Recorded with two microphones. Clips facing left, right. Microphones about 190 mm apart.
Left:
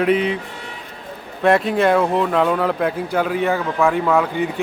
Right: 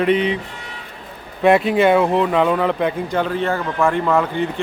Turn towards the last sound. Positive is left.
turn(degrees=5)  # may be behind; listen again after turning